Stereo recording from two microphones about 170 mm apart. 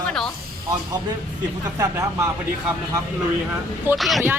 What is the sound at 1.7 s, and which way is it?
Speech, 15° right (ahead or behind).